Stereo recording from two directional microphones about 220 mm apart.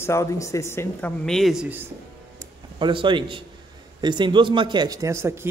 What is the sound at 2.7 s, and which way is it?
Speech, 20° right (ahead or behind).